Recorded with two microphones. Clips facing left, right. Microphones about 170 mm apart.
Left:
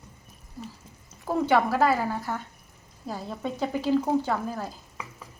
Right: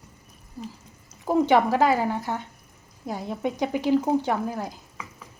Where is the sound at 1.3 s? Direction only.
15° right (ahead or behind).